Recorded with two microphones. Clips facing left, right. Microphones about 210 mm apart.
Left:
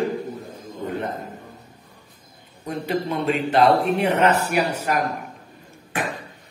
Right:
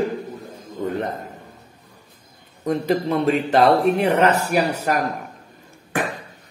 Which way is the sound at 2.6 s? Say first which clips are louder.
Right 5 dB; 40° right (ahead or behind).